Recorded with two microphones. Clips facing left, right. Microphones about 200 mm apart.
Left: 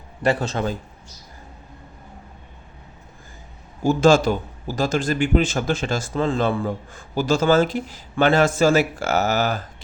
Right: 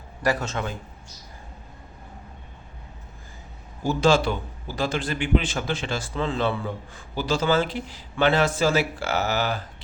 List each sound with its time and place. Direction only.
0.2 s a man's voice: 30° left (ahead or behind)
3.8 s a man's voice: 50° left (ahead or behind)